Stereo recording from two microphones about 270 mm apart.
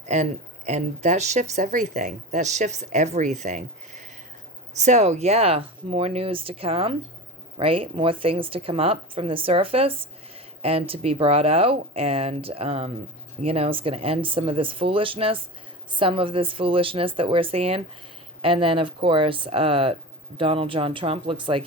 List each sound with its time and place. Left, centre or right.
0.0 s speech: right